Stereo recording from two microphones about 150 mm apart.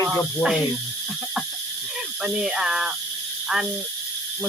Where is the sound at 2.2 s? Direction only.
5° right (ahead or behind).